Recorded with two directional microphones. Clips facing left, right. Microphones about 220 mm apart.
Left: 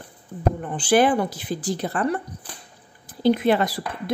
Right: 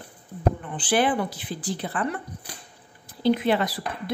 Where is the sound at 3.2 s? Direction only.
45° left (ahead or behind).